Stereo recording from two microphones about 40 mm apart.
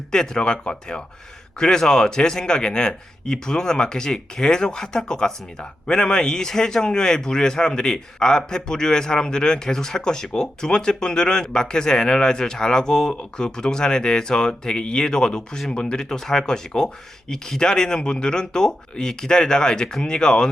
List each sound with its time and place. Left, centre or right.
0.1 s speech: centre